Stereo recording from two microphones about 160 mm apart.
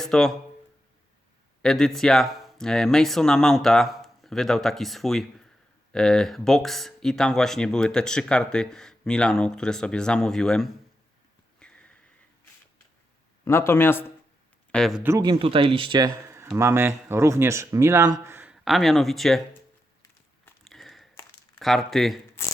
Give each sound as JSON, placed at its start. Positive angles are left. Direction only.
{"t": 0.0, "sound": "speech", "side_deg": 5}
{"t": 1.6, "sound": "speech", "side_deg": 5}
{"t": 11.6, "sound": "a sound", "side_deg": 5}
{"t": 13.4, "sound": "a man's voice", "side_deg": 15}
{"t": 14.7, "sound": "speech", "side_deg": 0}
{"t": 15.0, "sound": "speech", "side_deg": -15}
{"t": 15.3, "sound": "speech", "side_deg": -35}
{"t": 20.7, "sound": "a sound", "side_deg": 0}
{"t": 21.6, "sound": "speech", "side_deg": 0}